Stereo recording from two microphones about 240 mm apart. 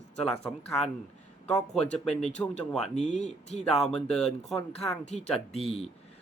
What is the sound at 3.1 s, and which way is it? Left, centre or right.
Speech, left.